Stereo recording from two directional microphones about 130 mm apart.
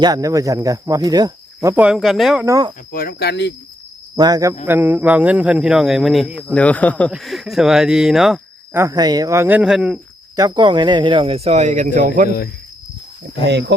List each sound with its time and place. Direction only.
0.0 s cricket: 30° right (ahead or behind)
1.7 s speech: 10° right (ahead or behind)
2.4 s cricket: 25° right (ahead or behind)
4.1 s cricket: 30° right (ahead or behind)
4.6 s speech: 15° right (ahead or behind)
6.5 s speech: 10° left (ahead or behind)
7.1 s speech: centre (ahead or behind)
8.7 s cricket: 25° right (ahead or behind)
9.6 s speech: 5° right (ahead or behind)
10.3 s speech: 30° right (ahead or behind); by 12.3 s 90° right